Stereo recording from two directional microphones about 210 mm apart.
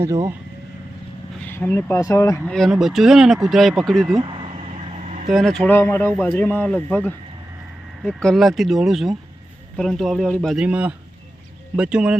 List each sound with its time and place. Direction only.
0.0 s speech: 15° right (ahead or behind)
1.4 s speech: 10° left (ahead or behind)
4.2 s vehicle: 25° right (ahead or behind)
5.3 s speech: centre (ahead or behind)